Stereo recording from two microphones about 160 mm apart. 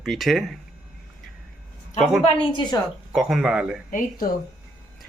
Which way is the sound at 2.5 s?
25° left (ahead or behind).